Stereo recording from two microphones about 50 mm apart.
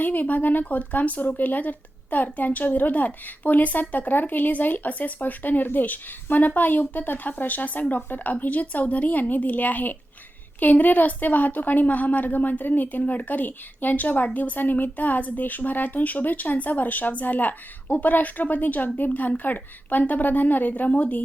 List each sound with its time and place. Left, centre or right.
0.0 s speech: left